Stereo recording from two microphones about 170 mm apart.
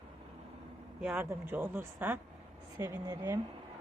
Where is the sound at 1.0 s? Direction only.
10° right (ahead or behind).